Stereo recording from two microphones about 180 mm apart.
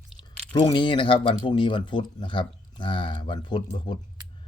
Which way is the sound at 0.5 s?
25° left (ahead or behind).